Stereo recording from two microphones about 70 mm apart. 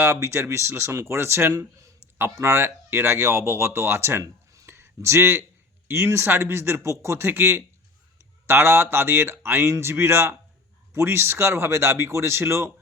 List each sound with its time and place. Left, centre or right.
0.0 s speech: right
4.6 s a sound: right
5.9 s speech: right
7.3 s speech: right